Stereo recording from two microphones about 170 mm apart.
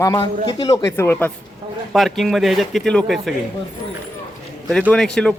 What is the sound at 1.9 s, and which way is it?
Speech, centre (ahead or behind).